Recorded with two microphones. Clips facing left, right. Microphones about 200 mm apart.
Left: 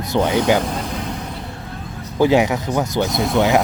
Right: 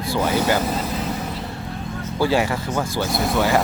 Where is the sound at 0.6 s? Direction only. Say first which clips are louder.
Even; 5° right (ahead or behind).